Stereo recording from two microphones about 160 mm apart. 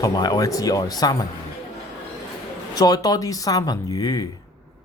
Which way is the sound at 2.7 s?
25° left (ahead or behind).